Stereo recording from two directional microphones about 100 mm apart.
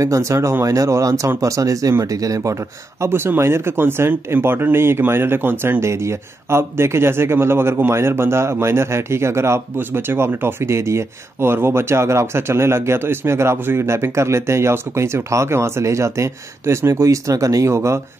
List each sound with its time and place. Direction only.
0.0 s speech: 30° right (ahead or behind)